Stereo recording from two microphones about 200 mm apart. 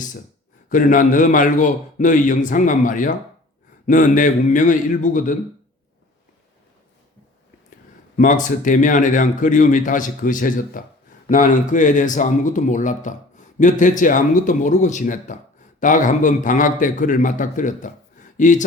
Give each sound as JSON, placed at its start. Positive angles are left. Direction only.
{"t": 0.7, "sound": "speech", "side_deg": 40}
{"t": 8.1, "sound": "speech", "side_deg": 40}